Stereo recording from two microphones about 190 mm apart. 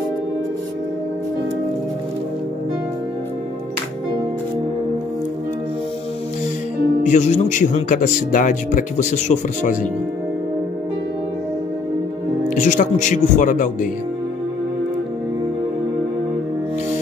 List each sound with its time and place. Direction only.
7.0 s speech: 40° left (ahead or behind)
12.4 s speech: 40° left (ahead or behind)